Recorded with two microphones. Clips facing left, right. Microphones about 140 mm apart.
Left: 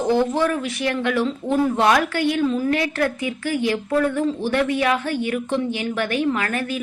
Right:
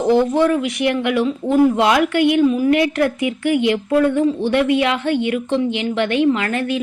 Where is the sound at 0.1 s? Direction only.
15° right (ahead or behind).